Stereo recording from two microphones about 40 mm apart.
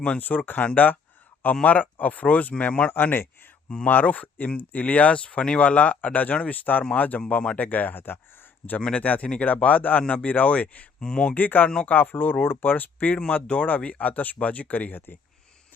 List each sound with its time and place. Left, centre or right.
0.0 s speech: left
2.9 s speech: left
3.8 s speech: left
7.9 s speech: left
8.8 s speech: left
9.0 s speech: left
11.0 s speech: centre
11.3 s speech: left
12.7 s speech: left
13.3 s speech: left
13.7 s speech: left